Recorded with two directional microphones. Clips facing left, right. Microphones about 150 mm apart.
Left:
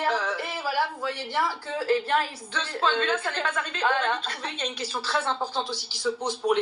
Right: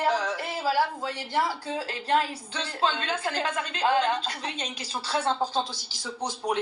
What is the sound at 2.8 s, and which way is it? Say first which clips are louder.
A woman's voice: left 2 dB; 35° right (ahead or behind).